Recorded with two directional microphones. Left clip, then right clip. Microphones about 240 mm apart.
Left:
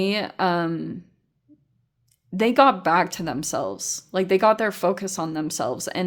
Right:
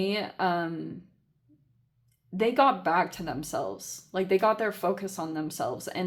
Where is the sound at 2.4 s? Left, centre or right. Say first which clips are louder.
Left 6 dB; left.